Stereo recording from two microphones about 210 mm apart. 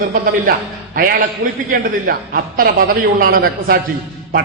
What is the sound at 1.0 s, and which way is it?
A man's voice, 45° right (ahead or behind).